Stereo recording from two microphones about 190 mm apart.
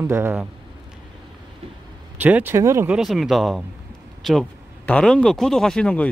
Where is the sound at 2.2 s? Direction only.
10° right (ahead or behind).